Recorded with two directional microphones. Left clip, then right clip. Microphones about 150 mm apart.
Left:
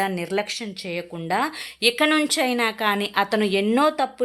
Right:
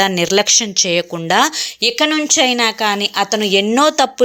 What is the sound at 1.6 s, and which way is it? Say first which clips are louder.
A woman's voice: right 5 dB; 15° right (ahead or behind).